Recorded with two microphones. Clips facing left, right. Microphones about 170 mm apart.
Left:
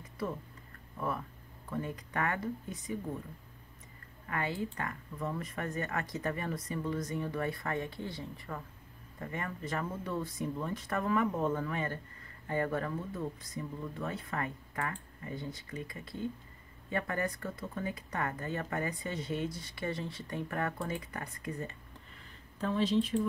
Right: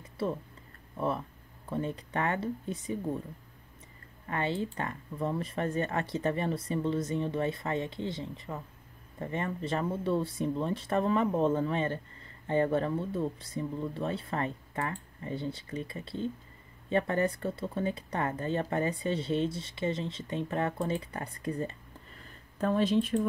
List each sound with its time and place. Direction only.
0.0 s a sound: 25° right (ahead or behind)
0.9 s speech: 25° right (ahead or behind)
4.3 s speech: 30° right (ahead or behind)
22.6 s speech: 55° right (ahead or behind)